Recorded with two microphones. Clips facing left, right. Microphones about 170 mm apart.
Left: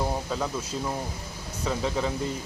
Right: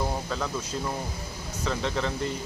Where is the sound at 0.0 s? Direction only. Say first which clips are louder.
Left 1 dB; 10° left (ahead or behind).